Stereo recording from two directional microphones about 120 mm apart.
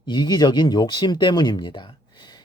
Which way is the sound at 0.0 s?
40° left (ahead or behind).